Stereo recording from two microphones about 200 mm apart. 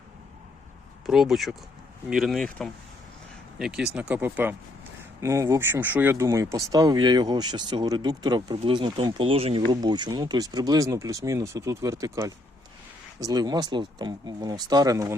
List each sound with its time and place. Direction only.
1.0 s speech: centre (ahead or behind); by 15.1 s 20° right (ahead or behind)